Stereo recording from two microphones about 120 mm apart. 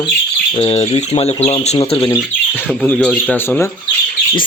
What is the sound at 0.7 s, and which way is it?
Speech, 60° left (ahead or behind).